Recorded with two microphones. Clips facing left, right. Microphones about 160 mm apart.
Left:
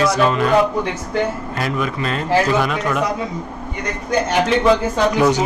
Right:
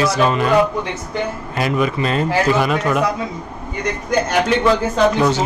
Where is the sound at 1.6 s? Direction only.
5° right (ahead or behind).